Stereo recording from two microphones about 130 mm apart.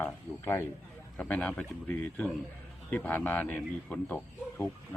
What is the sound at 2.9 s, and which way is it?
Speech, 15° left (ahead or behind).